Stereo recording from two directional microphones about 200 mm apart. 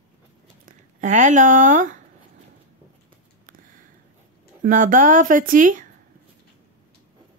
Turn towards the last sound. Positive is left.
turn(degrees=-40)  # may be behind; listen again after turning